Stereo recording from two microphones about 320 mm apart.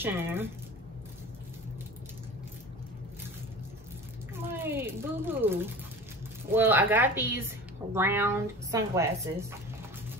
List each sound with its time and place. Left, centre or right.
0.0 s speech: centre
4.5 s speech: centre